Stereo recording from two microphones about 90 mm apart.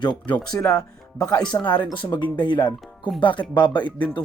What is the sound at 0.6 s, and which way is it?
Speech, 20° left (ahead or behind).